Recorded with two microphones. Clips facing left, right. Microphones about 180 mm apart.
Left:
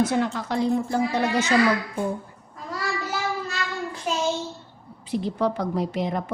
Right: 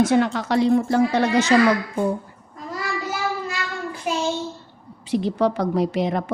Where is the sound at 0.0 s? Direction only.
90° right.